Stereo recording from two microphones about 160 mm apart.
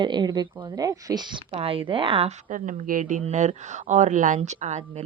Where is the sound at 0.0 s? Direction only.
30° right (ahead or behind).